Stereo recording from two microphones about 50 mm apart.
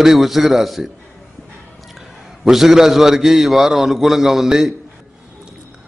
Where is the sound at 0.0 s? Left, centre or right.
Centre.